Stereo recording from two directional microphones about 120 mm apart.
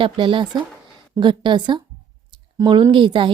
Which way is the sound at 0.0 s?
45° right (ahead or behind).